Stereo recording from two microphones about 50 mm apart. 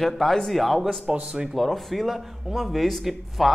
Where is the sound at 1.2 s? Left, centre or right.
Centre.